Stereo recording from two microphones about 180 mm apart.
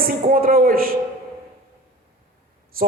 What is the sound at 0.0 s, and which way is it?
Speech, 55° right (ahead or behind).